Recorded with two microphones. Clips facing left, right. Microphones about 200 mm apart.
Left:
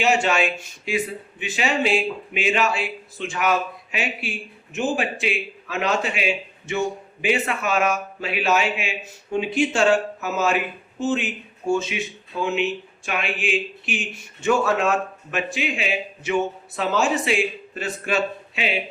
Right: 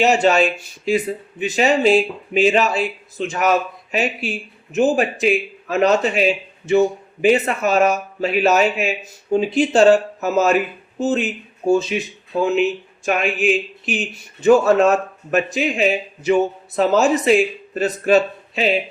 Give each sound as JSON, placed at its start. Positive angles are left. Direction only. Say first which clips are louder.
{"t": 0.0, "sound": "speech", "louder": "right 5 dB", "side_deg": -40}